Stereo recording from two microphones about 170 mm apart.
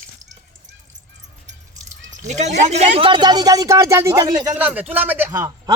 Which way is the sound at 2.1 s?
45° right (ahead or behind).